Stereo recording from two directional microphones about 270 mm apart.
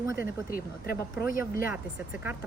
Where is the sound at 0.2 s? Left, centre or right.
Left.